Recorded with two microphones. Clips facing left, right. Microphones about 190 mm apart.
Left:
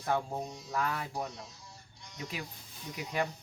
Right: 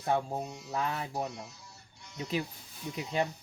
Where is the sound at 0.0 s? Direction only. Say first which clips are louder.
Right 2 dB; 25° right (ahead or behind).